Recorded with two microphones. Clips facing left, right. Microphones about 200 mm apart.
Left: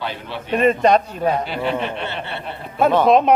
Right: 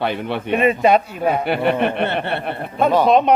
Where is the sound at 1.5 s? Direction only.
60° right (ahead or behind).